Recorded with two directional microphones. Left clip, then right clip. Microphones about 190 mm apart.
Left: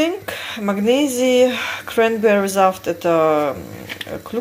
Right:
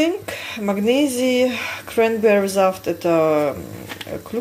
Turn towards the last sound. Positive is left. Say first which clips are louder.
# left 1 dB
turn(degrees=-5)  # may be behind; listen again after turning